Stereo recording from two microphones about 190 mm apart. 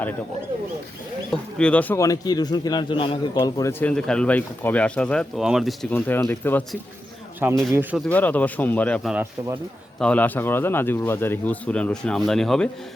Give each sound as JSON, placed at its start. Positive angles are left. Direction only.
{"t": 1.3, "sound": "speech", "side_deg": 5}
{"t": 3.3, "sound": "speech", "side_deg": 15}
{"t": 5.9, "sound": "speech", "side_deg": 10}
{"t": 7.7, "sound": "speech", "side_deg": -10}
{"t": 8.0, "sound": "speech", "side_deg": 10}